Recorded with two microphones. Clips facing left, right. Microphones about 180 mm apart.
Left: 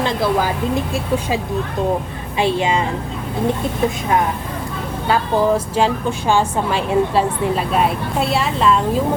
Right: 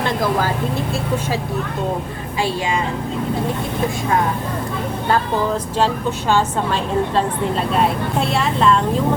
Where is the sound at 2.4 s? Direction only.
20° left (ahead or behind).